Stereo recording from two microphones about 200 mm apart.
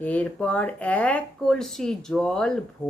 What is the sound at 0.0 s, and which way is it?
Speech, 5° left (ahead or behind).